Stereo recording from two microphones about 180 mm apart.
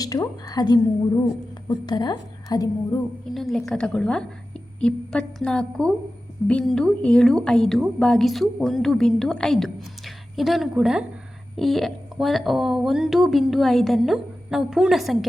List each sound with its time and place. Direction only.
0.0 s a woman's voice: 20° left (ahead or behind)
3.3 s a woman's voice: centre (ahead or behind)